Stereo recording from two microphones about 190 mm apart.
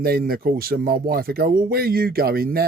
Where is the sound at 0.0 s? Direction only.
50° right (ahead or behind).